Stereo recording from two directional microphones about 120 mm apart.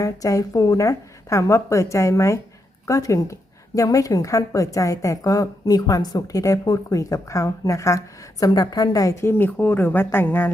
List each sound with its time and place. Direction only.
0.0 s a woman's voice: 25° left (ahead or behind)